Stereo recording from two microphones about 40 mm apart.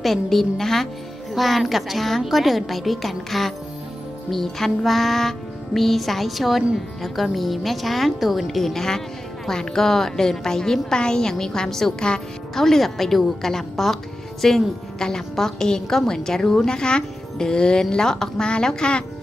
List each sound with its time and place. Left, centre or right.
0.0 s music: centre
9.5 s a woman's voice: centre